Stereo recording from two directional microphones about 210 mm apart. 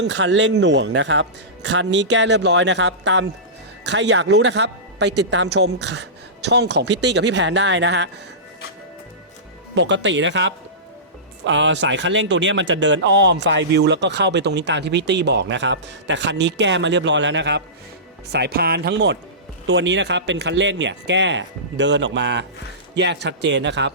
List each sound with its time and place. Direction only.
0.0 s speech: 60° right (ahead or behind)
9.7 s speech: 60° right (ahead or behind)